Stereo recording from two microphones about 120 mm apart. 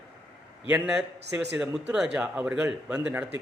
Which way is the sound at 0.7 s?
10° right (ahead or behind).